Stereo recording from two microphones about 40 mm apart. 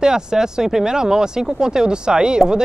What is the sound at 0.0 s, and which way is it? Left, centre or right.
Speech, centre.